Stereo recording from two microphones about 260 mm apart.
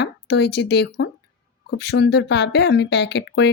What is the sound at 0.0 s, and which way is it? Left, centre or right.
A woman's voice, left.